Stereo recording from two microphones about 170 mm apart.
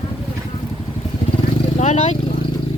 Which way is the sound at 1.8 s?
45° left (ahead or behind).